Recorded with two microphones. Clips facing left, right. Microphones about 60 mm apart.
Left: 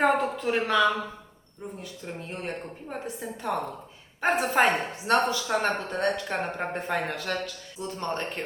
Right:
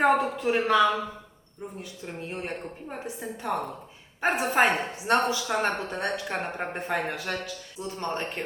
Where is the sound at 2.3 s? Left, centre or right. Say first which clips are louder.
Even; centre.